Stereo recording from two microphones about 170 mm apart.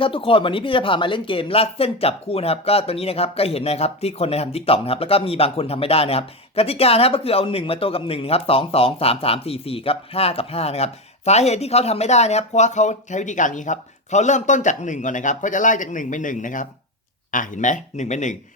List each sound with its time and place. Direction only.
0.0 s speech: 30° left (ahead or behind)